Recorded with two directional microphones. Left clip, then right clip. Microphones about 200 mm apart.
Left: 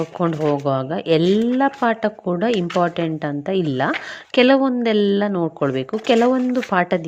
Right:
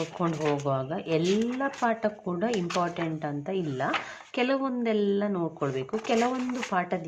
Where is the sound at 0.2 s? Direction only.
30° left (ahead or behind).